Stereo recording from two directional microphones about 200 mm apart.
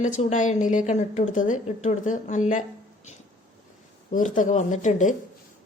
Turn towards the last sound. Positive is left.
turn(degrees=40)  # may be behind; listen again after turning